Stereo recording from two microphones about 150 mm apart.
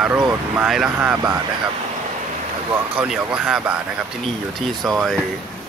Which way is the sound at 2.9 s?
5° right (ahead or behind).